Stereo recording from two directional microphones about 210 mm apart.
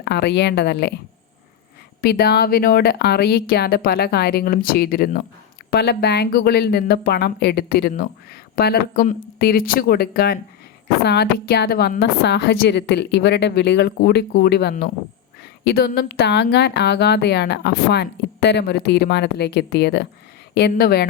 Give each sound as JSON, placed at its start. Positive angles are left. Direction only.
{"t": 0.0, "sound": "speech", "side_deg": 50}
{"t": 2.0, "sound": "speech", "side_deg": 50}